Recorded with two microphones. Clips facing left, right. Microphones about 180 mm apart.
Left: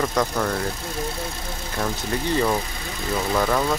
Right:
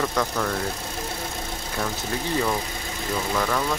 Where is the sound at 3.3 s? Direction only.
10° left (ahead or behind).